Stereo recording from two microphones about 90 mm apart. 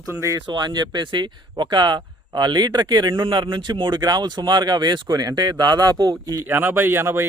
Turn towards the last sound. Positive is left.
turn(degrees=-30)  # may be behind; listen again after turning